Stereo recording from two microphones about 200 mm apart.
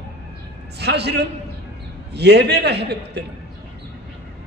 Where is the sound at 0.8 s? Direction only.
55° right (ahead or behind).